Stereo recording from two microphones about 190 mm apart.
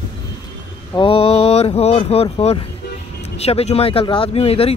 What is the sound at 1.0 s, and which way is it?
Speech, 30° left (ahead or behind).